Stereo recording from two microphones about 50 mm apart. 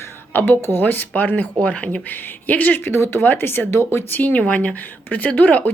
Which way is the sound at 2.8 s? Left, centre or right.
Left.